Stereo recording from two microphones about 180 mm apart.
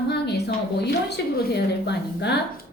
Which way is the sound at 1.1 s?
65° left (ahead or behind).